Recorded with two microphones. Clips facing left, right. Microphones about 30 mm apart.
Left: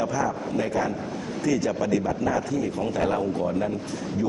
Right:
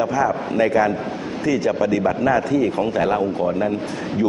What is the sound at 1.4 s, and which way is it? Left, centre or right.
Speech, right.